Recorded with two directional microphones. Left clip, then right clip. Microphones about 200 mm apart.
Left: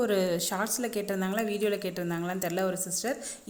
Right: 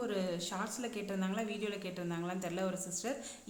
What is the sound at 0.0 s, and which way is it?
Speech, 35° left (ahead or behind).